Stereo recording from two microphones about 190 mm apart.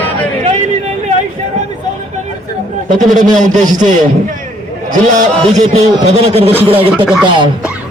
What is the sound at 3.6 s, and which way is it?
Speech, 20° right (ahead or behind).